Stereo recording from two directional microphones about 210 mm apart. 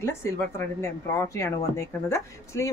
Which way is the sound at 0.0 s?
10° left (ahead or behind).